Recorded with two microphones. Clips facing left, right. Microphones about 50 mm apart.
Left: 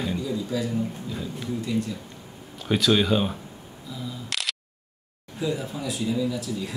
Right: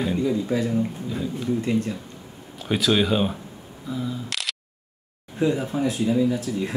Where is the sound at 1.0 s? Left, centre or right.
Centre.